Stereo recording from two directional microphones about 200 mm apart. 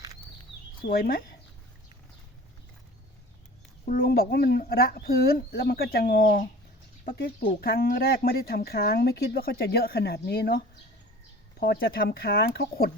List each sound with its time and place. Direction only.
0.8 s speech: 45° left (ahead or behind)
3.8 s speech: 45° left (ahead or behind)
11.6 s speech: 50° left (ahead or behind)